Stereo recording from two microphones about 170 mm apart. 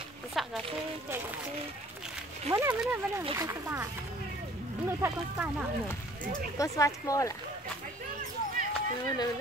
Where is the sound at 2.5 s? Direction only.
10° right (ahead or behind).